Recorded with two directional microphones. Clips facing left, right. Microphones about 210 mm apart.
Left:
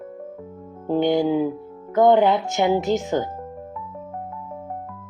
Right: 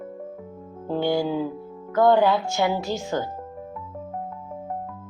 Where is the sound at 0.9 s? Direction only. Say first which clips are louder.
Left 4 dB; 20° left (ahead or behind).